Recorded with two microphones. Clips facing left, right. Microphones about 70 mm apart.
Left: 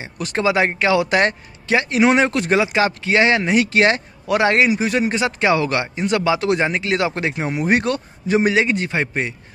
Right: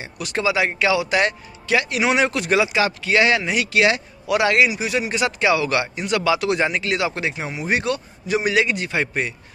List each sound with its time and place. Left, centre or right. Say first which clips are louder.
0.0 s speech: left 3 dB; left